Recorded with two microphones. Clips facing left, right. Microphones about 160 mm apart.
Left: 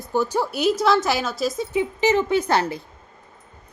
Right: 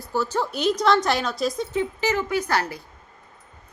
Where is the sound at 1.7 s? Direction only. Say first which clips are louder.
Left 4 dB; 20° left (ahead or behind).